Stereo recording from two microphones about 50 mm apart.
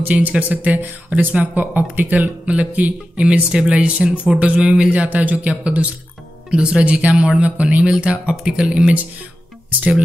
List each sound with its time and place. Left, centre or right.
0.0 s speech: right
0.3 s speech: right